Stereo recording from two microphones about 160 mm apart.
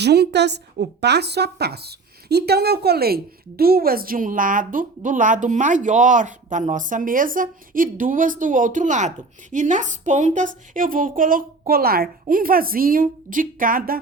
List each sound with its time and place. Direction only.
0.0 s a woman's voice: 90° right; by 14.0 s 65° right (ahead or behind)